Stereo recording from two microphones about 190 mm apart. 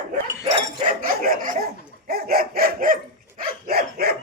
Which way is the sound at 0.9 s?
50° right (ahead or behind).